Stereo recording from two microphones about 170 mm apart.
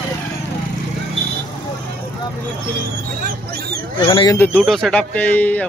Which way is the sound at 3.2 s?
65° right (ahead or behind).